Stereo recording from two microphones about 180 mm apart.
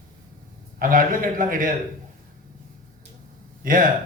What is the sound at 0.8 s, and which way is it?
Speech, 50° right (ahead or behind).